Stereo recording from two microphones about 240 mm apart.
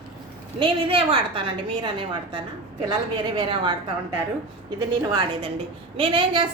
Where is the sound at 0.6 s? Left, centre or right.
Right.